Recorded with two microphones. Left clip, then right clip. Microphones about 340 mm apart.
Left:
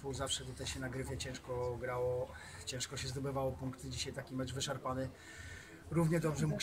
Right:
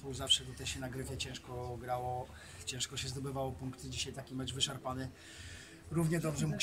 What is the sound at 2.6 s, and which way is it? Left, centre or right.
Speech, centre.